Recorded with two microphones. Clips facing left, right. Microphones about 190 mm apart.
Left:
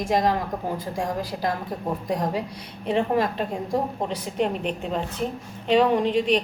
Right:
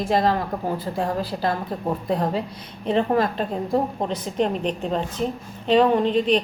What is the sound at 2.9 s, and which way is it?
A woman's voice, 10° left (ahead or behind).